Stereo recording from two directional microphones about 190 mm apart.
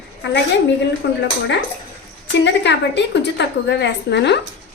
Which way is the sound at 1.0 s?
65° left (ahead or behind).